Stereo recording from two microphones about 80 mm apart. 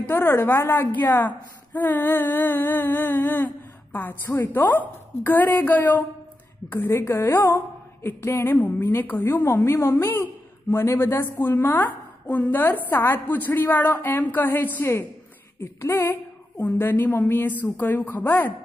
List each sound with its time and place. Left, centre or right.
0.0 s a woman's voice: left